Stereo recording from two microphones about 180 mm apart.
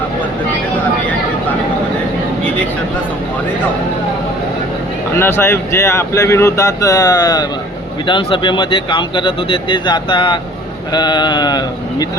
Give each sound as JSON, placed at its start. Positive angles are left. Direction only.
{"t": 5.1, "sound": "speech", "side_deg": 15}